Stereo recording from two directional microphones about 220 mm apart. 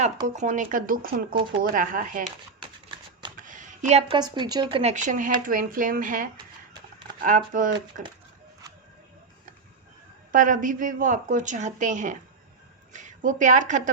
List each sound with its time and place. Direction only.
0.3 s speech: 35° right (ahead or behind)
3.3 s a sound: 35° right (ahead or behind)
4.2 s speech: 20° right (ahead or behind); by 8.0 s 35° right (ahead or behind)
10.3 s a woman's voice: 35° right (ahead or behind)